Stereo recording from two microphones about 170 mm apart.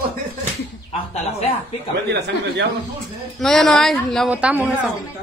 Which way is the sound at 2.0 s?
85° right.